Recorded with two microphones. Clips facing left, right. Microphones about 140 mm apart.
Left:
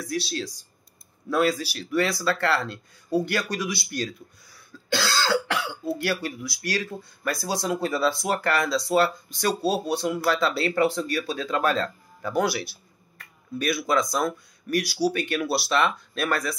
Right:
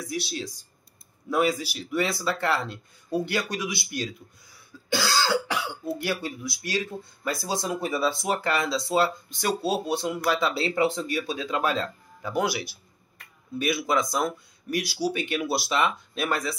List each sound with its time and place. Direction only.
0.0 s speech: 15° right (ahead or behind)
4.9 s cough: 15° right (ahead or behind)
5.9 s speech: 20° right (ahead or behind)